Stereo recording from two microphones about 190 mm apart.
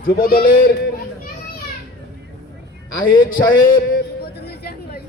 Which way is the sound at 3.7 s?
55° left (ahead or behind).